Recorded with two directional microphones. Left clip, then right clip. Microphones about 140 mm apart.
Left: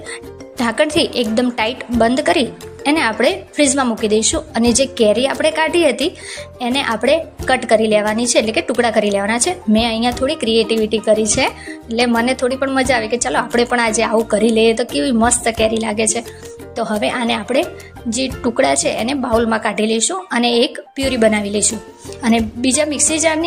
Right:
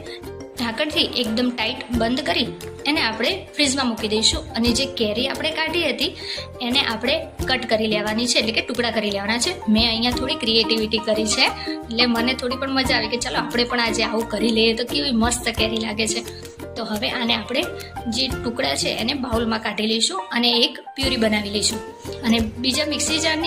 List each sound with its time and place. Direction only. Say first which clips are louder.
0.6 s a woman's voice: left 6 dB; 55° left (ahead or behind)